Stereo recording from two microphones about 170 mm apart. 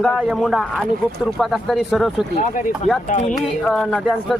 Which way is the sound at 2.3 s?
50° left (ahead or behind).